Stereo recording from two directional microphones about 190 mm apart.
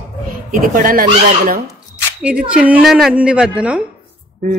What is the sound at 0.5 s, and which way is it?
Speech, 50° right (ahead or behind).